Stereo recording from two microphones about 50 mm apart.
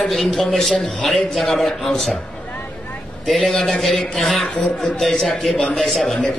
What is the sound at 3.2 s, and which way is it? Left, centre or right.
A man's voice, centre.